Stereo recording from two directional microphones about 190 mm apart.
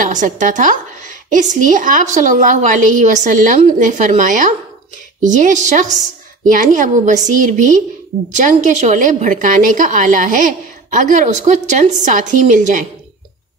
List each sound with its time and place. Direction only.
0.0 s a woman's voice: 40° right (ahead or behind)